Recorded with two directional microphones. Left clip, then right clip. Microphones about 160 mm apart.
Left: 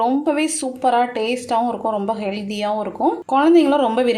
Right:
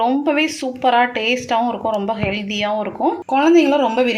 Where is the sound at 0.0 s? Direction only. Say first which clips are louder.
Right 2 dB; 5° left (ahead or behind).